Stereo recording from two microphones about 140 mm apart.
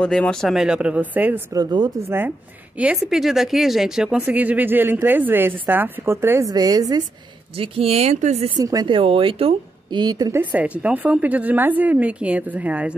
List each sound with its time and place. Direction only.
0.0 s speech: 5° left (ahead or behind); by 1.4 s 10° right (ahead or behind)
1.5 s speech: 30° right (ahead or behind)
2.0 s speech: 15° right (ahead or behind)
7.5 s speech: 40° right (ahead or behind)
8.5 s speech: 25° right (ahead or behind)
8.9 s a woman's voice: 40° right (ahead or behind)
10.5 s speech: 10° right (ahead or behind)